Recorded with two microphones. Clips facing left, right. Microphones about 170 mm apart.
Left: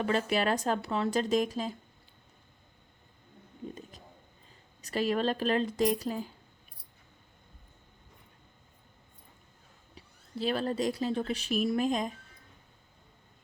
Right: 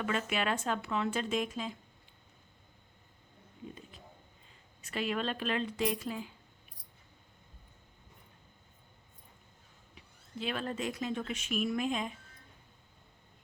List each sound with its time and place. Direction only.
0.0 s speech: 35° left (ahead or behind)
4.8 s speech: 40° left (ahead or behind)
9.9 s speech: 35° left (ahead or behind)